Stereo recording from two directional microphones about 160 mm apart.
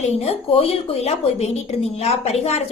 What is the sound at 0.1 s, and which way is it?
A woman's voice, 40° left (ahead or behind).